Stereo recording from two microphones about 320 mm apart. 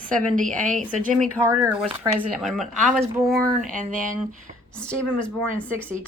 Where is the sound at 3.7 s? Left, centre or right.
Right.